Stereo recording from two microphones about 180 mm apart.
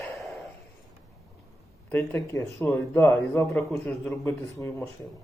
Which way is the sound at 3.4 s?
Centre (ahead or behind).